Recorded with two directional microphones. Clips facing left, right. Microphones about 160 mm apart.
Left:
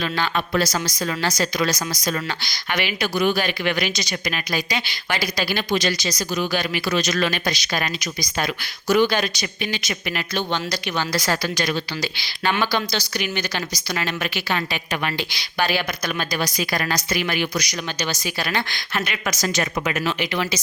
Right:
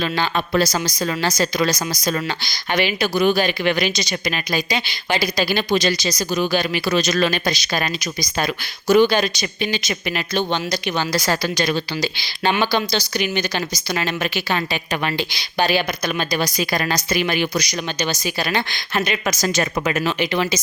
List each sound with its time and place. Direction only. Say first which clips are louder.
0.0 s speech: right 2 dB; 30° right (ahead or behind)